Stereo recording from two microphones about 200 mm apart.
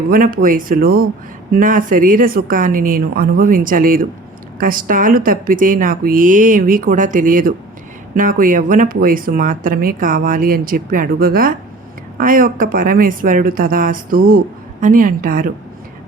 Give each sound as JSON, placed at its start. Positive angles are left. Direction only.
{"t": 0.1, "sound": "speech", "side_deg": -45}